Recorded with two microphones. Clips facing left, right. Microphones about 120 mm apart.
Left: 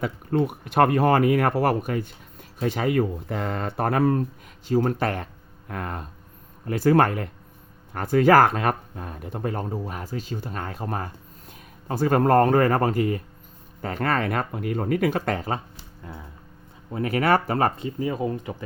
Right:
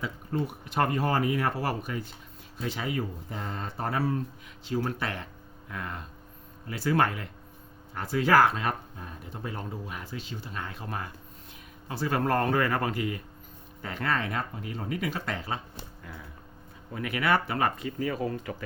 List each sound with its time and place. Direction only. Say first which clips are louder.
0.0 s speech: left 8 dB; 60° left (ahead or behind)
4.7 s speech: left 8 dB; 45° left (ahead or behind)
16.1 s a sound: left 6 dB; 25° left (ahead or behind)
16.9 s speech: left 6 dB; 40° left (ahead or behind); by 18.5 s 20° left (ahead or behind)